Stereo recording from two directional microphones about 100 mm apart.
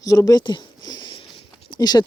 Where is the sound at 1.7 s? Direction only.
45° left (ahead or behind).